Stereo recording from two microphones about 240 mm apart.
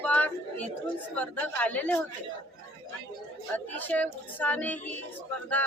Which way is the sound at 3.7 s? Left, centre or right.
Centre.